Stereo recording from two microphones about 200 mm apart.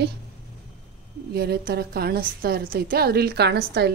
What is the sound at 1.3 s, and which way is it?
A woman's voice, 50° right (ahead or behind).